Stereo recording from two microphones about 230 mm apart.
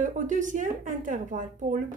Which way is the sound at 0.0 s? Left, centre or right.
Right.